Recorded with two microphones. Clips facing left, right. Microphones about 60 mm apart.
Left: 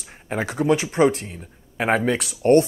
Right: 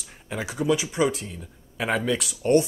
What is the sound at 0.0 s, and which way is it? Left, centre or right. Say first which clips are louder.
Speech: left 5 dB; left.